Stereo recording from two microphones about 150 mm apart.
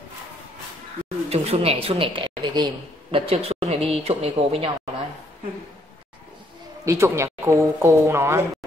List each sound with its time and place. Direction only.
1.0 s a woman's voice: 45° right (ahead or behind)
6.8 s speech: 20° right (ahead or behind)